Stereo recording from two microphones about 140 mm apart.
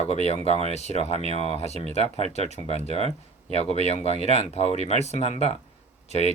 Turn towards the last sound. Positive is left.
turn(degrees=50)  # may be behind; listen again after turning